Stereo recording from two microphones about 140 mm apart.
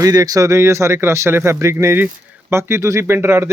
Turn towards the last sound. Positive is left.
turn(degrees=-20)  # may be behind; listen again after turning